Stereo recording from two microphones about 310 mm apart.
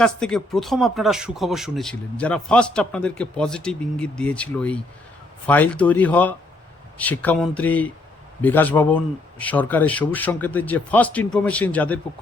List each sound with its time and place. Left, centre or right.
0.0 s speech: centre